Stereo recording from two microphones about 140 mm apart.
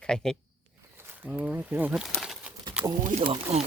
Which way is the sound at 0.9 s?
15° right (ahead or behind).